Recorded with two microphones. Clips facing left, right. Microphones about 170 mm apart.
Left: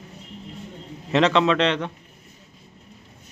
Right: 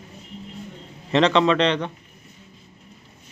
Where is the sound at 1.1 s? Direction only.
5° left (ahead or behind).